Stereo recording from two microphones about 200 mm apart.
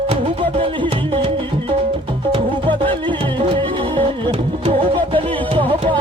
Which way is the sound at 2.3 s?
25° right (ahead or behind).